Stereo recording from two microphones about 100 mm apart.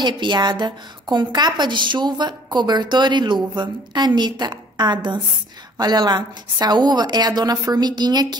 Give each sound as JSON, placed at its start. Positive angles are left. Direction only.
{"t": 0.0, "sound": "a woman's voice", "side_deg": -50}